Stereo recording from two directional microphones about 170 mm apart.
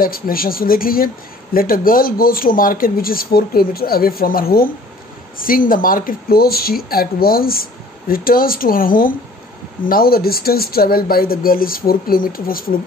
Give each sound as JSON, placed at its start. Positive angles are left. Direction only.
{"t": 0.0, "sound": "speech", "side_deg": 60}